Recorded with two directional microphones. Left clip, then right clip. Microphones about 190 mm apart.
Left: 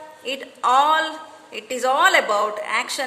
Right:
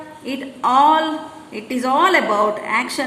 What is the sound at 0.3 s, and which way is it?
A woman's voice, 30° left (ahead or behind).